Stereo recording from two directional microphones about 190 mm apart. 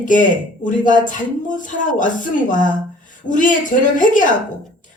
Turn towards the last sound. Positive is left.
turn(degrees=45)  # may be behind; listen again after turning